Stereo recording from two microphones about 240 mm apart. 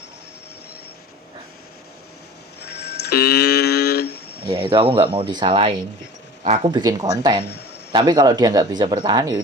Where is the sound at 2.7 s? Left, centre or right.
Left.